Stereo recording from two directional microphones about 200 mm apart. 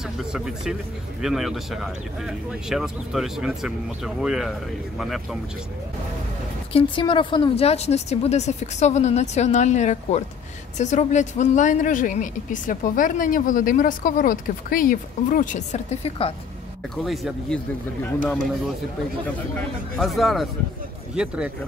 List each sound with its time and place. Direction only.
0.2 s speech: centre (ahead or behind)
6.7 s speech: 25° left (ahead or behind)
16.9 s speech: centre (ahead or behind)
20.0 s speech: centre (ahead or behind)